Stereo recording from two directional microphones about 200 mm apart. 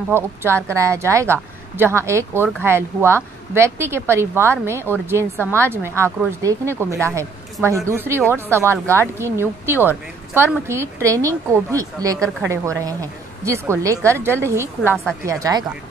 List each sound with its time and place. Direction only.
0.1 s a woman's voice: 10° right (ahead or behind)